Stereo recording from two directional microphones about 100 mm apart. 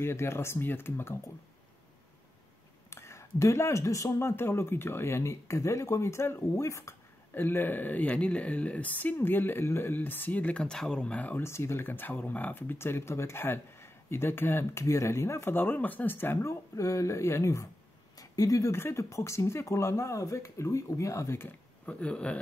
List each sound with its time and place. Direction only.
0.0 s speech: 25° left (ahead or behind)
2.9 s speech: 30° left (ahead or behind)
11.4 s speech: 25° left (ahead or behind)
21.8 s speech: 10° left (ahead or behind)